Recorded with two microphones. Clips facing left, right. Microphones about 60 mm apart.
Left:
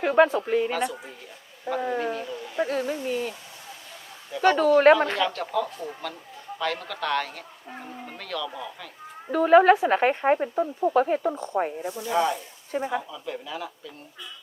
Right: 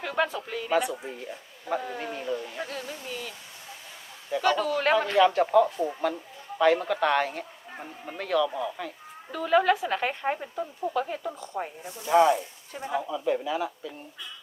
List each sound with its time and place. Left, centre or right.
0.0 s speech: left
0.7 s speech: centre
1.7 s speech: left
2.1 s speech: centre
2.6 s speech: left
4.4 s speech: left
5.1 s speech: centre
9.3 s speech: left
12.0 s speech: centre
12.7 s speech: left
13.0 s speech: centre